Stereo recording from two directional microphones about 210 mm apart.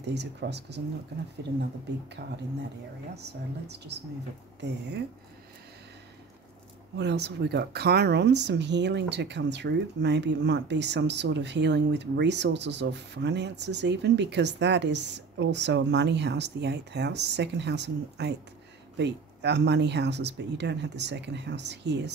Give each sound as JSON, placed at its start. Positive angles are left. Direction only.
{"t": 0.0, "sound": "speech", "side_deg": -55}
{"t": 2.2, "sound": "speech", "side_deg": -50}
{"t": 7.0, "sound": "speech", "side_deg": -55}